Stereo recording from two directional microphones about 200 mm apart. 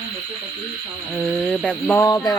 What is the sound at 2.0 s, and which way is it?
Speech, 20° left (ahead or behind).